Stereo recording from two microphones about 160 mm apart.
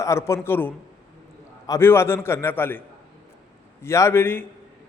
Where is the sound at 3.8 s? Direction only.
15° left (ahead or behind).